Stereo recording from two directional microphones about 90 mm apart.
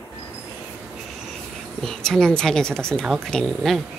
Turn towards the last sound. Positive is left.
turn(degrees=5)  # may be behind; listen again after turning